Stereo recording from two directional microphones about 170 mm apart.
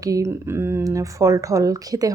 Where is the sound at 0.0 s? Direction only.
20° right (ahead or behind).